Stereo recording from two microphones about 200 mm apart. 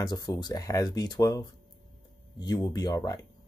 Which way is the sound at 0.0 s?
20° left (ahead or behind).